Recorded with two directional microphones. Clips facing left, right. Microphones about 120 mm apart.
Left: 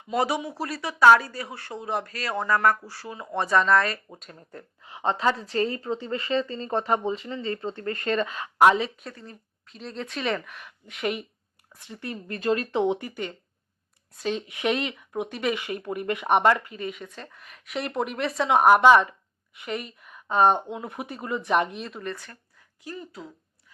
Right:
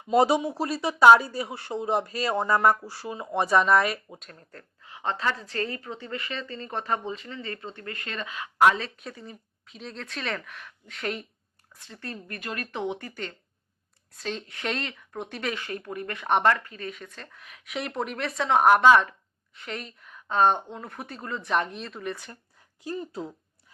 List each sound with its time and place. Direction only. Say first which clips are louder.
0.1 s speech: right 5 dB; 25° right (ahead or behind)
4.2 s a woman's voice: left 4 dB; 10° left (ahead or behind); by 8.4 s 40° left (ahead or behind)
8.6 s a woman's voice: left 3 dB; 20° left (ahead or behind)
9.0 s a woman's voice: even; 5° right (ahead or behind); by 13.1 s 20° left (ahead or behind)
14.2 s speech: left 5 dB; 5° left (ahead or behind)
15.6 s speech: left 5 dB; 20° left (ahead or behind)
22.0 s speech: right 3 dB; 10° right (ahead or behind)
22.8 s speech: right 5 dB; 30° right (ahead or behind)